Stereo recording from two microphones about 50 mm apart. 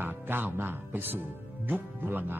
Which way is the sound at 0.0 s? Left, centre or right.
Right.